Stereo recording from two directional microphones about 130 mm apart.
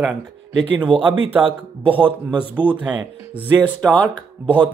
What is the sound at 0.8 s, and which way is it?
Speech, 40° right (ahead or behind).